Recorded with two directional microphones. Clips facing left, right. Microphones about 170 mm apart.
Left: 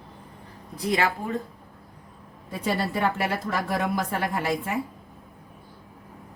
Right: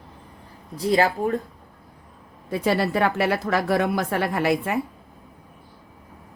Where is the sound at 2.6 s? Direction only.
75° right (ahead or behind).